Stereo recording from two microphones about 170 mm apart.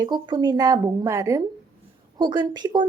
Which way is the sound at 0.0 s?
25° right (ahead or behind).